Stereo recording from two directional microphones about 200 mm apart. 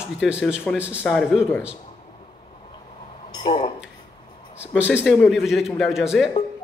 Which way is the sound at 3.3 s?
25° left (ahead or behind).